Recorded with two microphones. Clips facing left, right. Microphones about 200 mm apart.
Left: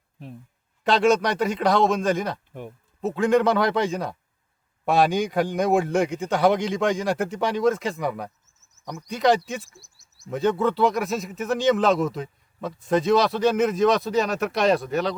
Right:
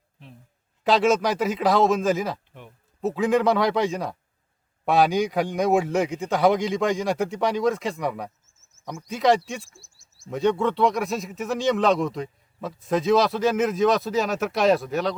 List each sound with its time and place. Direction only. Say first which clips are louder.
0.9 s speech: even; centre (ahead or behind)
2.5 s speech: left 8 dB; 45° left (ahead or behind)
3.0 s speech: left 1 dB; centre (ahead or behind)
9.7 s speech: left 2 dB; 20° left (ahead or behind)
10.2 s speech: even; centre (ahead or behind)